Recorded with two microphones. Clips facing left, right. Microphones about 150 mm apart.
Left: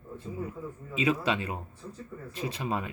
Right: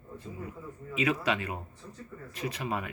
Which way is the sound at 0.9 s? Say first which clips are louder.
Left 1 dB; 30° left (ahead or behind).